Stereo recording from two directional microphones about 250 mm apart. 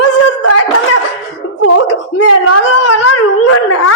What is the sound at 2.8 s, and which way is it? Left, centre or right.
Speech, left.